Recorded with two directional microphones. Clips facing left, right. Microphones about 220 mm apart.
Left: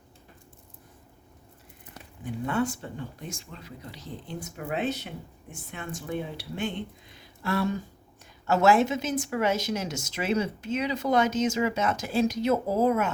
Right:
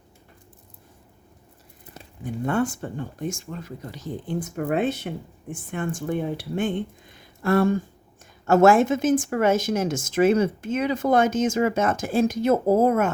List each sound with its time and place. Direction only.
2.5 s speech: 50° right (ahead or behind)